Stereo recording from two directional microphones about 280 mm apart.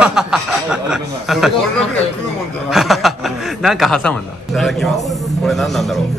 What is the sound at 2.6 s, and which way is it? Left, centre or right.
A man's voice, centre.